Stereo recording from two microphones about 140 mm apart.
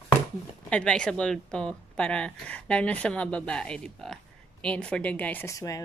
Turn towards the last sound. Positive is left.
turn(degrees=25)  # may be behind; listen again after turning